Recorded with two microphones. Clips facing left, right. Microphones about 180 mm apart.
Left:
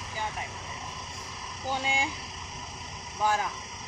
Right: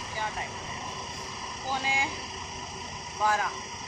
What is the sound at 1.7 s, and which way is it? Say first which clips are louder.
Speech: left 1 dB; 25° left (ahead or behind).